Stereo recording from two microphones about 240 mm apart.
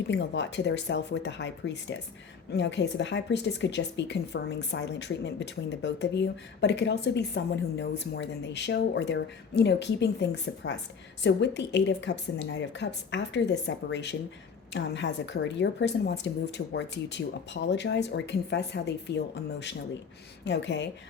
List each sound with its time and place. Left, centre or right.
0.1 s speech: left